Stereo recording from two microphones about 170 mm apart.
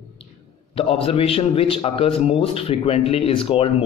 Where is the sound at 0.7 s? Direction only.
35° left (ahead or behind).